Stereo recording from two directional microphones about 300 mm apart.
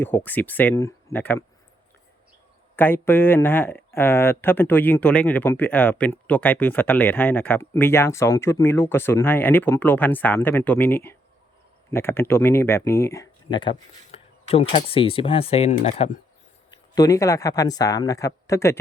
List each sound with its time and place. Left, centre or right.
0.0 s speech: centre
2.7 s speech: centre; by 16.2 s left
16.7 s speech: centre